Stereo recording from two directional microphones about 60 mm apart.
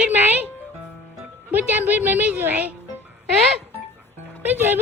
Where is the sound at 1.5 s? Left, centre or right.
Right.